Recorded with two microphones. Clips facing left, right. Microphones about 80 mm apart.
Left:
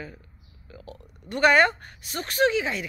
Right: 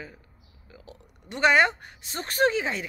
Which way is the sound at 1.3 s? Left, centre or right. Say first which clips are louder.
Left 2 dB; centre.